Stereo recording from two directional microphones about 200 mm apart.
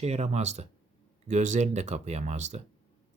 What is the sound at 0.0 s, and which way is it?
Speech, 35° right (ahead or behind).